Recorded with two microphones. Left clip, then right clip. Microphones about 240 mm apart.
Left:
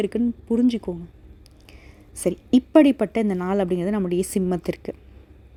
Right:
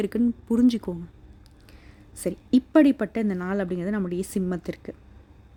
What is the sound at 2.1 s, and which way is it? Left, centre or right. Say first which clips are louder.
A woman's voice: left 3 dB; centre.